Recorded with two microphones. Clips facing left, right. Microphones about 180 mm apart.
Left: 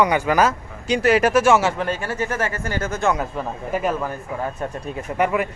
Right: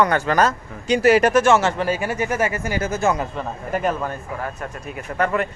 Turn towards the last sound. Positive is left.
turn(degrees=10)  # may be behind; listen again after turning